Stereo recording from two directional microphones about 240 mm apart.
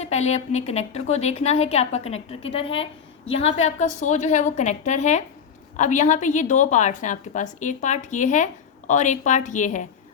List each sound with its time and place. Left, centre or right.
0.0 s a woman's voice: left